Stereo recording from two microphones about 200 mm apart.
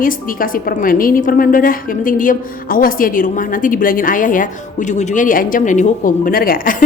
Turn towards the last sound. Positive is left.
turn(degrees=45)  # may be behind; listen again after turning